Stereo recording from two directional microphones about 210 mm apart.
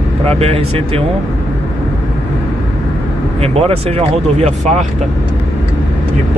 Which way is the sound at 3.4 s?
30° right (ahead or behind).